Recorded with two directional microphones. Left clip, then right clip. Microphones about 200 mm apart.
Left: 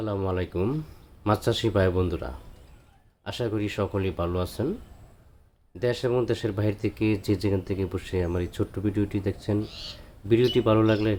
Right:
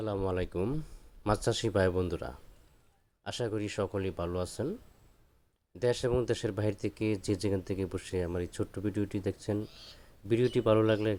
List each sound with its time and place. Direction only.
0.0 s speech: 40° right (ahead or behind)
5.8 s speech: 45° right (ahead or behind)